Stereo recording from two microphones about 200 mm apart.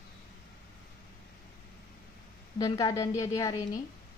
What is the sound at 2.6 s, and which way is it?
A woman's voice, 20° left (ahead or behind).